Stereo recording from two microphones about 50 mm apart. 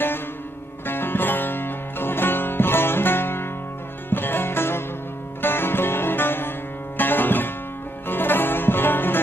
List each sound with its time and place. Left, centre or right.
0.9 s music: left